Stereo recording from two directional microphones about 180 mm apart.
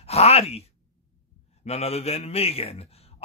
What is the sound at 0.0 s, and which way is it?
A man's voice, 35° left (ahead or behind).